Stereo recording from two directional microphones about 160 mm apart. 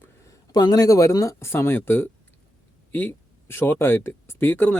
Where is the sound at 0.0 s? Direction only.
20° left (ahead or behind).